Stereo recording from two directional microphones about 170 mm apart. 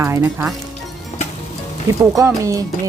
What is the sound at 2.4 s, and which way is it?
Speech, 20° right (ahead or behind).